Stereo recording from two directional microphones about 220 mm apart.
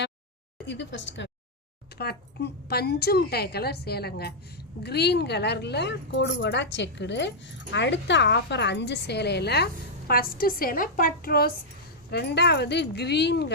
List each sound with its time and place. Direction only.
0.6 s a woman's voice: 55° left (ahead or behind)